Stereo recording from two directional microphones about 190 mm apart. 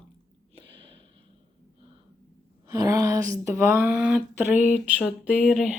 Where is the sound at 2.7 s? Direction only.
20° right (ahead or behind).